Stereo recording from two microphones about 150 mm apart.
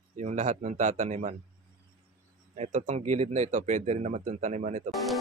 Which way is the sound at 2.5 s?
55° right (ahead or behind).